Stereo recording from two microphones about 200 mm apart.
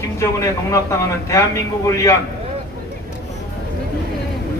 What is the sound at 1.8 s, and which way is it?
Speech, 15° left (ahead or behind).